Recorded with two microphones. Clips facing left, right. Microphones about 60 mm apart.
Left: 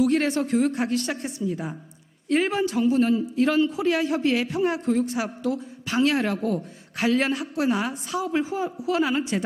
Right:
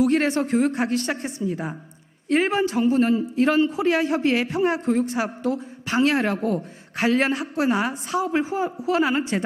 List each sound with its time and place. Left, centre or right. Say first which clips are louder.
0.0 s a man's voice: right 2 dB; right
2.3 s a man's voice: right 2 dB; right
2.8 s a man's voice: even; right
5.1 s a woman's voice: right 2 dB; right
5.8 s a man's voice: right 2 dB; right
6.3 s a woman's voice: right 2 dB; right
6.9 s a woman's voice: right 2 dB; right